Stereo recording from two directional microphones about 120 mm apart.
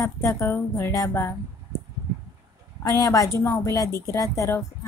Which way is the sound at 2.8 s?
25° left (ahead or behind).